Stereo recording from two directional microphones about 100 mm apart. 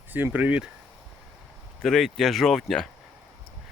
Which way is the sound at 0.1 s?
20° right (ahead or behind).